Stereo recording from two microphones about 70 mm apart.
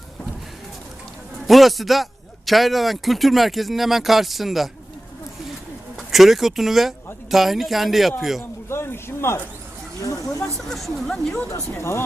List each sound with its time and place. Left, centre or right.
1.5 s speech: centre
6.0 s speech: centre
8.7 s speech: left
10.0 s speech: left
10.7 s speech: centre
11.8 s speech: left